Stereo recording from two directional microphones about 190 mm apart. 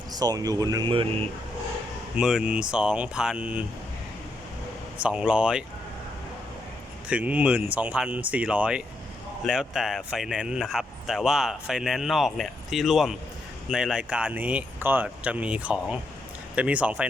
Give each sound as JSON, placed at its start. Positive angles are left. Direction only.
{"t": 0.1, "sound": "speech", "side_deg": -20}
{"t": 2.1, "sound": "speech", "side_deg": -5}
{"t": 4.9, "sound": "speech", "side_deg": -5}
{"t": 7.1, "sound": "speech", "side_deg": -5}